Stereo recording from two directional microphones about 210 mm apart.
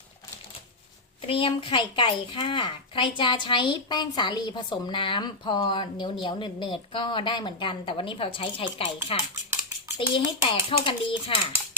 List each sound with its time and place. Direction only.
1.3 s a woman's voice: 25° left (ahead or behind)
10.2 s a woman's voice: 25° left (ahead or behind)